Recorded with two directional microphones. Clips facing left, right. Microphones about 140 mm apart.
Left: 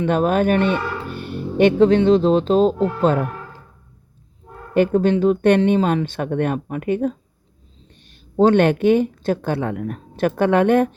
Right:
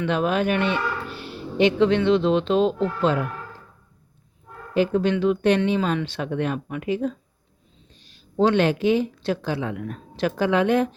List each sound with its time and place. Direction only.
0.1 s speech: 45° left (ahead or behind)
4.7 s speech: 50° left (ahead or behind)